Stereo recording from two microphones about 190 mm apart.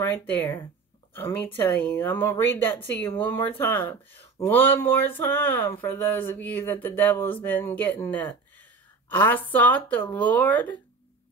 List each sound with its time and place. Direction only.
0.0 s speech: 10° left (ahead or behind)